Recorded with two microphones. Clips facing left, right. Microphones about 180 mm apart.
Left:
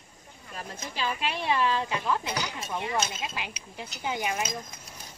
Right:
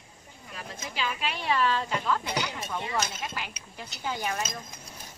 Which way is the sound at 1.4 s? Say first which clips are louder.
Even; 20° left (ahead or behind).